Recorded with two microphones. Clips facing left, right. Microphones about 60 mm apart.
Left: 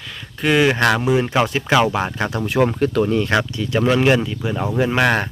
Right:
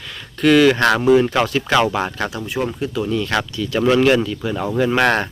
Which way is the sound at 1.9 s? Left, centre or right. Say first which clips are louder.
Even; centre.